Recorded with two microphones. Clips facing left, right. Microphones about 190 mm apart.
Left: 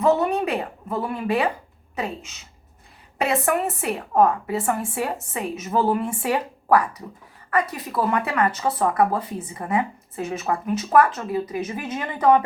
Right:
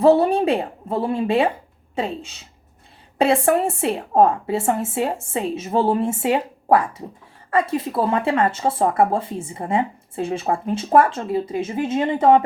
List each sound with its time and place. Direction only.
0.0 s a woman's voice: 30° right (ahead or behind)